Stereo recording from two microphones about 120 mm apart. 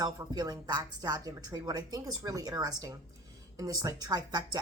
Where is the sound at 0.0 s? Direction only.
30° right (ahead or behind).